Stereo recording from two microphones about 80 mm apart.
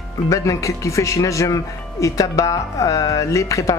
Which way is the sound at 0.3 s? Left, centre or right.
Left.